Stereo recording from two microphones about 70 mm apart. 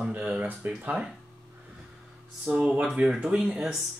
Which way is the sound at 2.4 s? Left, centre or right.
Centre.